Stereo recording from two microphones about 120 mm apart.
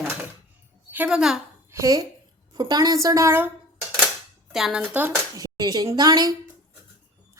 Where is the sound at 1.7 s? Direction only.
25° right (ahead or behind).